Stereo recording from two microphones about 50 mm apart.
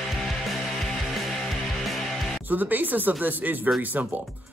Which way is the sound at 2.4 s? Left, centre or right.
Right.